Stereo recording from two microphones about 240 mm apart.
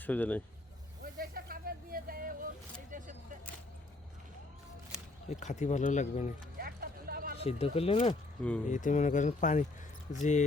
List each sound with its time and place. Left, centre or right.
0.0 s speech: centre
1.2 s music: right
2.9 s vehicle: right
5.4 s speech: left
6.6 s vehicle: right
7.3 s speech: left